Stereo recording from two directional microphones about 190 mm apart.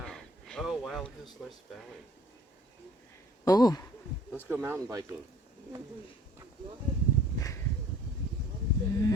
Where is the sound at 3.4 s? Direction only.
20° left (ahead or behind).